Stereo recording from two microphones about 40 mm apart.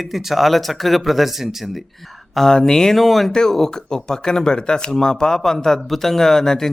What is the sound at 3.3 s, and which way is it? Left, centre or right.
Speech, centre.